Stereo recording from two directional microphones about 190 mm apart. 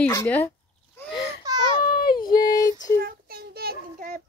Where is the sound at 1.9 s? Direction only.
50° left (ahead or behind).